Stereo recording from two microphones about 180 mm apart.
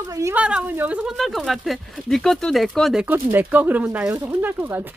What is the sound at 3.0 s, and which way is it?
Speech, 10° right (ahead or behind).